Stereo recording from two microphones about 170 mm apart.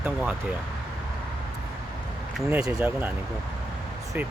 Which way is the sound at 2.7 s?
10° right (ahead or behind).